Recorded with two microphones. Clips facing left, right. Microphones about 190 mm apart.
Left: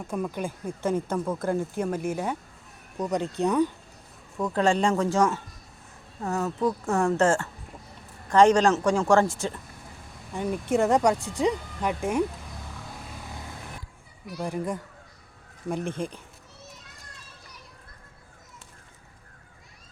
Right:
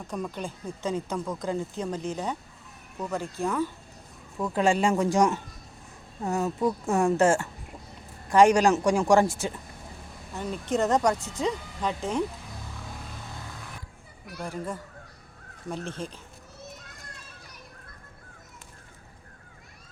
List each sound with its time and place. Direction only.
0.1 s speech: 10° left (ahead or behind)
4.4 s speech: 5° right (ahead or behind)
10.3 s speech: 10° left (ahead or behind)
14.4 s speech: 15° left (ahead or behind)